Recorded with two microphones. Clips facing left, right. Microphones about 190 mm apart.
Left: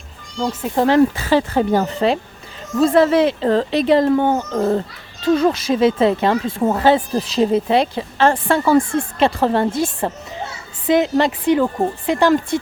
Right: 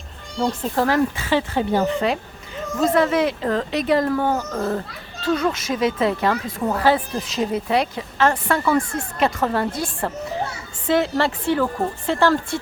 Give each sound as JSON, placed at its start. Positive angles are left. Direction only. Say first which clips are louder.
{"t": 0.4, "sound": "a woman's voice", "louder": "left 2 dB", "side_deg": 15}
{"t": 1.1, "sound": "speech", "louder": "left 5 dB", "side_deg": 40}
{"t": 2.8, "sound": "a woman's voice", "louder": "left 5 dB", "side_deg": 30}